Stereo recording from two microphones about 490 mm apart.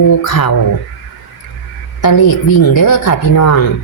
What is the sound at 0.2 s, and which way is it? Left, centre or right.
Speech, left.